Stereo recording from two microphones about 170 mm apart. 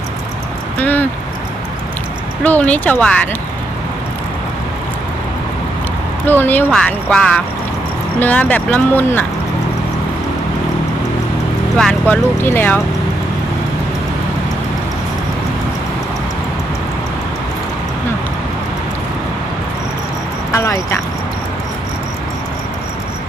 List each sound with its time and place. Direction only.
0.8 s speech: 10° left (ahead or behind)
2.4 s speech: 10° left (ahead or behind)
6.2 s speech: 10° left (ahead or behind)
11.8 s speech: 5° left (ahead or behind)
20.5 s speech: 15° left (ahead or behind)